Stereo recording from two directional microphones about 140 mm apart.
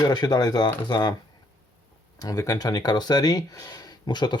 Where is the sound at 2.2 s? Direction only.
25° left (ahead or behind).